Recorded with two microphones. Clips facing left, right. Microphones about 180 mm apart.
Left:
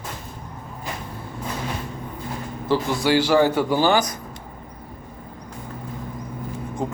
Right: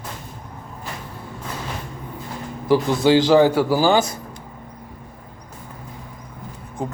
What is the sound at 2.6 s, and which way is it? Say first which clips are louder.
A man's voice: right 5 dB; 15° right (ahead or behind).